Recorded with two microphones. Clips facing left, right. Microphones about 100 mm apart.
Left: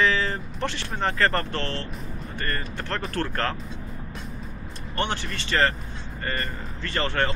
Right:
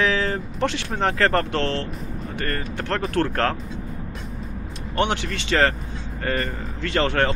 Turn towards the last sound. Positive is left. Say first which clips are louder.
# right 5 dB
turn(degrees=-65)  # may be behind; listen again after turning